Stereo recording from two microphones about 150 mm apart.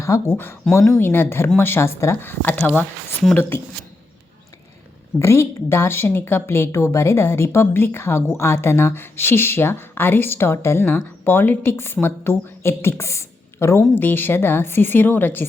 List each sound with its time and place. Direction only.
0.0 s a woman's voice: 15° left (ahead or behind)
5.2 s a woman's voice: 20° left (ahead or behind)